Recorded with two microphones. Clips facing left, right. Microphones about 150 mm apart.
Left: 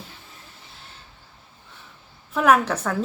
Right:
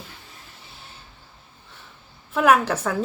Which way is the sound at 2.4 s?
5° right (ahead or behind).